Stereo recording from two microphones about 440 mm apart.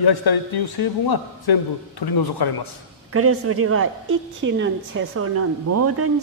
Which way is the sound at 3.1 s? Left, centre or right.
Right.